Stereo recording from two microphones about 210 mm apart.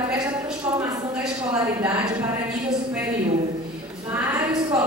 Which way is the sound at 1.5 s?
10° right (ahead or behind).